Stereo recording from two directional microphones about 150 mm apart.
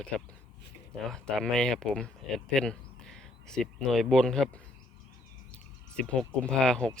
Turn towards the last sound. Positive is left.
turn(degrees=5)  # may be behind; listen again after turning